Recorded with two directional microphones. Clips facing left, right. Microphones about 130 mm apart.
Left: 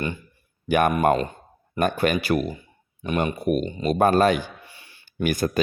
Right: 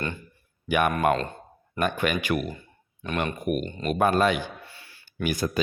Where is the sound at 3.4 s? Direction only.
35° left (ahead or behind).